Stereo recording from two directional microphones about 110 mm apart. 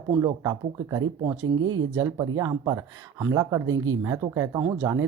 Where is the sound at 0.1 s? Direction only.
35° right (ahead or behind).